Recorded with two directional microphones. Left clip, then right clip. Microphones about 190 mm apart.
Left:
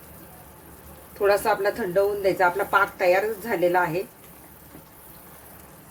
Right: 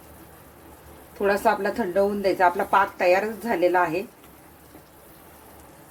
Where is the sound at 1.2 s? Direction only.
30° right (ahead or behind).